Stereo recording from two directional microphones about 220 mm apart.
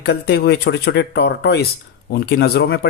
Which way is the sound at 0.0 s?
45° left (ahead or behind).